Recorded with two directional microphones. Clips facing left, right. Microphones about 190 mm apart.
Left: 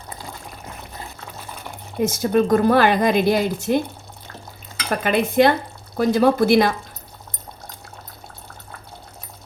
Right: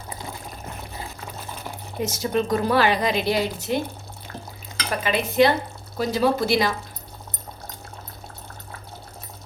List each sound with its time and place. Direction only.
2.0 s a woman's voice: 50° left (ahead or behind)
4.9 s a woman's voice: 50° left (ahead or behind)